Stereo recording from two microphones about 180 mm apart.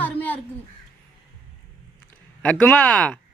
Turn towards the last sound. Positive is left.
turn(degrees=5)  # may be behind; listen again after turning